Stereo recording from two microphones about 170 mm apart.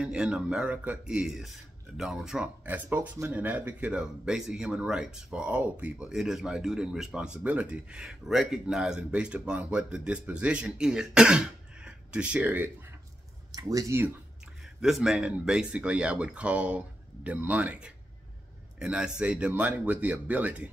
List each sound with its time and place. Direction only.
0.0 s speech: 5° right (ahead or behind)
14.8 s speech: centre (ahead or behind)